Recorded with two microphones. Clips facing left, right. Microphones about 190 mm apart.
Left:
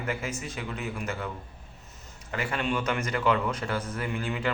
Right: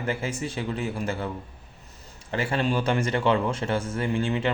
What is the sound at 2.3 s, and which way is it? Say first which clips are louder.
Speech: right 4 dB; 30° right (ahead or behind).